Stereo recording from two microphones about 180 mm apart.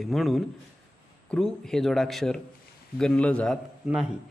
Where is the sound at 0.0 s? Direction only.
Centre (ahead or behind).